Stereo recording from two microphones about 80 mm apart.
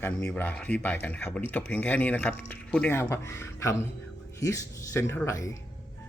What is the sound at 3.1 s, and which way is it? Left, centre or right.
Speech, left.